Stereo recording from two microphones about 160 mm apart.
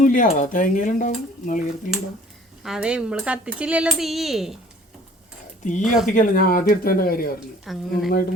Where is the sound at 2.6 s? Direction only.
5° right (ahead or behind).